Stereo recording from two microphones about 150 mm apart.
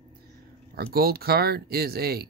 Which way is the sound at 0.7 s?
90° right.